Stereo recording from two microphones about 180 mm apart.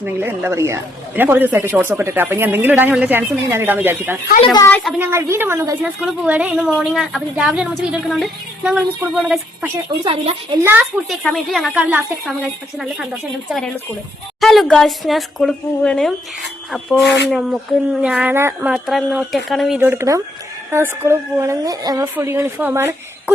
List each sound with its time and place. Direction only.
0.0 s speech: 10° right (ahead or behind)
4.5 s a woman's voice: 15° left (ahead or behind)
4.9 s a woman's voice: 15° right (ahead or behind)
10.0 s speech: 25° right (ahead or behind)
10.6 s speech: 10° right (ahead or behind)
11.1 s a woman's voice: centre (ahead or behind)
19.8 s speech: 15° right (ahead or behind)